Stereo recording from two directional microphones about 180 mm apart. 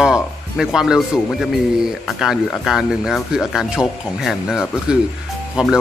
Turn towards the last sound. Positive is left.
turn(degrees=-5)  # may be behind; listen again after turning